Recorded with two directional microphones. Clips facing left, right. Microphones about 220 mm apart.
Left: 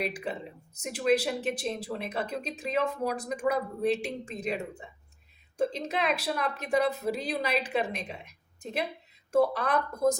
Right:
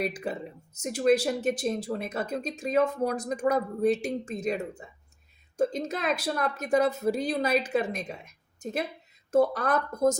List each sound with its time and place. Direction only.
0.0 s speech: 45° right (ahead or behind)